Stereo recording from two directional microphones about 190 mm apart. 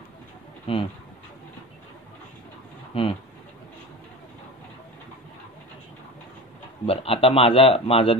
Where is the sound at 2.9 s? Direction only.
30° left (ahead or behind).